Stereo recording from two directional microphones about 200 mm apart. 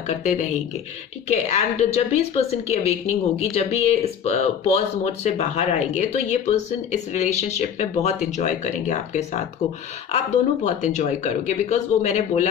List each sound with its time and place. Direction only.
0.2 s speech: 40° left (ahead or behind)